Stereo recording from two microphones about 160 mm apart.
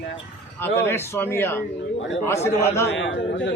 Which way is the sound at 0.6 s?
15° left (ahead or behind).